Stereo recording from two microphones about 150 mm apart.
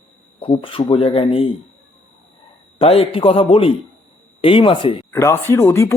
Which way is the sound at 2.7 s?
40° left (ahead or behind).